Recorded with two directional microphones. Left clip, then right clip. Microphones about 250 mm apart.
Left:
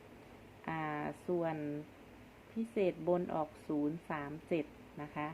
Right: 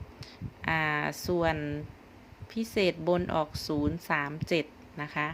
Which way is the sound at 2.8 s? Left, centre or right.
Right.